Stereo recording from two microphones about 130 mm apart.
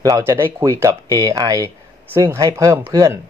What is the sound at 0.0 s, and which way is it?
Speech, 25° right (ahead or behind).